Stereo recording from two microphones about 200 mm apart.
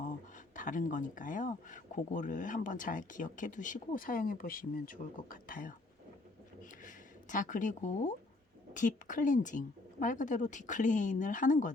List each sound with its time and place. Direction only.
0.0 s speech: 40° left (ahead or behind)
6.6 s a sound: 40° left (ahead or behind)
8.7 s speech: 40° left (ahead or behind)